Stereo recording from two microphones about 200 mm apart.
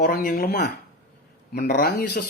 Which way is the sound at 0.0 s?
45° left (ahead or behind).